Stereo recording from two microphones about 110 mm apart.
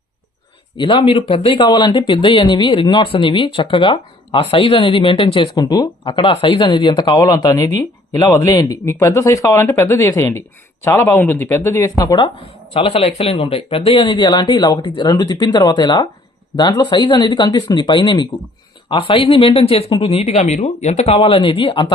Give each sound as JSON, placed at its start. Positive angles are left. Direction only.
{"t": 0.8, "sound": "speech", "side_deg": 45}
{"t": 5.5, "sound": "speech", "side_deg": 35}
{"t": 12.7, "sound": "speech", "side_deg": 55}